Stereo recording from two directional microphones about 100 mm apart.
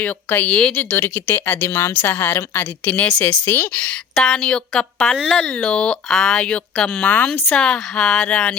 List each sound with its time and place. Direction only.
0.0 s speech: 20° left (ahead or behind)
4.1 s speech: 5° left (ahead or behind)